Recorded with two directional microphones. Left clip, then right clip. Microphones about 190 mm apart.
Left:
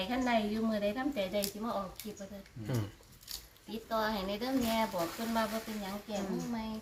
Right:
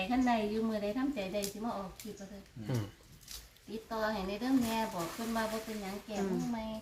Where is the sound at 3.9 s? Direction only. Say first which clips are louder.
Left 2 dB; 60° left (ahead or behind).